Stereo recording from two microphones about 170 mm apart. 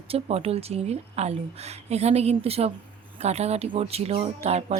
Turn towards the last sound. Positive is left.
turn(degrees=-40)  # may be behind; listen again after turning